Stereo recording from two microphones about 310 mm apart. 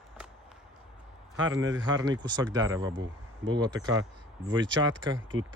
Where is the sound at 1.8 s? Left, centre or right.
Centre.